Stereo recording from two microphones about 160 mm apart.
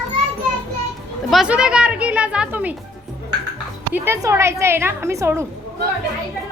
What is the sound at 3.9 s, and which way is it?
A woman's voice, 15° right (ahead or behind).